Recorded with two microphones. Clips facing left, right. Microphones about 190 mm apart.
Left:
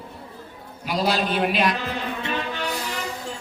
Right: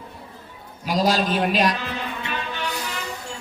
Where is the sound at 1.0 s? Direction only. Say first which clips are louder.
Right 1 dB; 40° right (ahead or behind).